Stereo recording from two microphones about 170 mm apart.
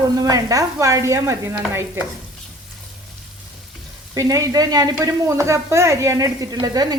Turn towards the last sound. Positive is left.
turn(degrees=-20)  # may be behind; listen again after turning